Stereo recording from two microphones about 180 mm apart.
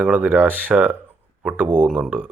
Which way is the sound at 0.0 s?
10° right (ahead or behind).